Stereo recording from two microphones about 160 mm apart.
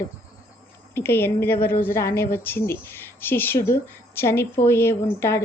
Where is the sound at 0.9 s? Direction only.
15° left (ahead or behind).